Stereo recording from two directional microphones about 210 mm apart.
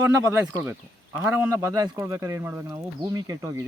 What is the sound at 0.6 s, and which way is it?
Speech, 10° right (ahead or behind).